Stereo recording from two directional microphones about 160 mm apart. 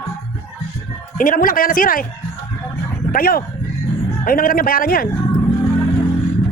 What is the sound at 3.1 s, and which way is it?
Speech, 65° left (ahead or behind).